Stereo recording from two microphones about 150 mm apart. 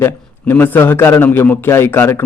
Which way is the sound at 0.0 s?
15° left (ahead or behind).